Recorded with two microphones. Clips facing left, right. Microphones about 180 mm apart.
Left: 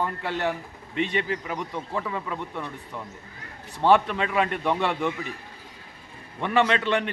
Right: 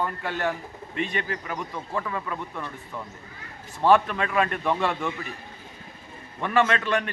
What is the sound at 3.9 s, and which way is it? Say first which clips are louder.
Speech: even; 20° left (ahead or behind).